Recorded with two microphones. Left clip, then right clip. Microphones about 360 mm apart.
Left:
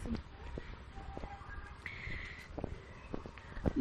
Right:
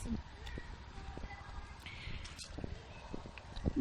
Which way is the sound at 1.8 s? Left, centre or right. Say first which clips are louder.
Left 4 dB; centre.